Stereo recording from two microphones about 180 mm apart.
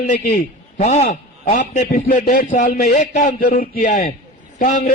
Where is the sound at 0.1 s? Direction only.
40° left (ahead or behind).